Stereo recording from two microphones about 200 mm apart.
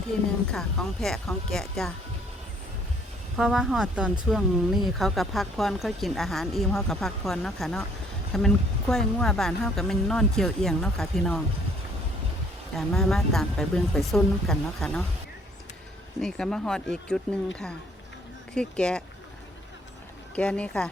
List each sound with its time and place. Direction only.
0.1 s speech: 5° left (ahead or behind)
3.3 s speech: centre (ahead or behind)
12.7 s speech: centre (ahead or behind)
16.2 s speech: 5° left (ahead or behind)
18.5 s speech: 5° left (ahead or behind)
20.3 s speech: 5° left (ahead or behind)